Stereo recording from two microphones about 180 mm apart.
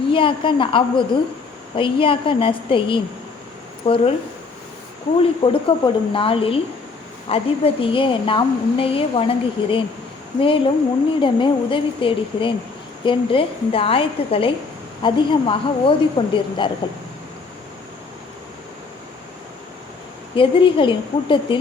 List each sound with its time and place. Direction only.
0.1 s a woman's voice: 30° left (ahead or behind)
5.2 s a woman's voice: 30° left (ahead or behind)
11.2 s a woman's voice: 30° left (ahead or behind)
20.3 s a woman's voice: 30° left (ahead or behind)